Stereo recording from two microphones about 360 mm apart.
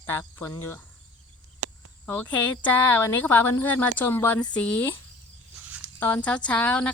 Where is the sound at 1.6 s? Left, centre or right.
Right.